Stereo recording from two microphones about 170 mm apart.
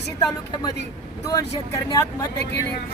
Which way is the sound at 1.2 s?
20° left (ahead or behind).